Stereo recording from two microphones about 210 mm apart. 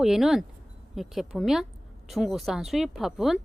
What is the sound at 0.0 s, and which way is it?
A woman's voice, centre (ahead or behind).